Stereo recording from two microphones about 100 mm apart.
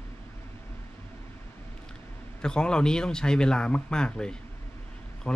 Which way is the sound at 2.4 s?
10° left (ahead or behind).